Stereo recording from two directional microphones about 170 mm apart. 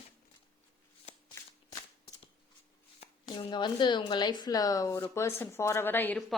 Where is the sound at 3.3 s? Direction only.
25° left (ahead or behind); by 6.2 s 10° left (ahead or behind).